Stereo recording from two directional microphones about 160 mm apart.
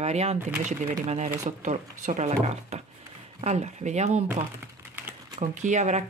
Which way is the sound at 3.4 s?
45° right (ahead or behind).